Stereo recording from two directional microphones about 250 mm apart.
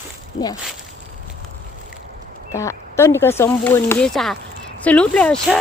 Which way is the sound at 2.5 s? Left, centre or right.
Centre.